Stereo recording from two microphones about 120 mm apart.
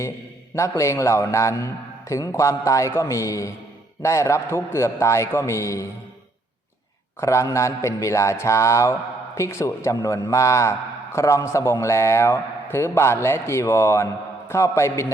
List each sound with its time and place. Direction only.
0.5 s speech: 25° left (ahead or behind)
7.2 s speech: 25° left (ahead or behind)